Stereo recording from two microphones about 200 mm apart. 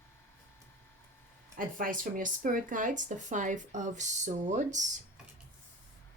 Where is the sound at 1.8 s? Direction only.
45° right (ahead or behind).